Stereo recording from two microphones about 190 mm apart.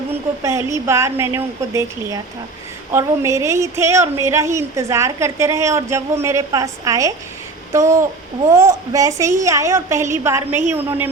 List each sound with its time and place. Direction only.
0.4 s a woman's voice: 15° right (ahead or behind)